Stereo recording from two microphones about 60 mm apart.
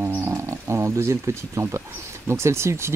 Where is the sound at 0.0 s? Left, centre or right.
Right.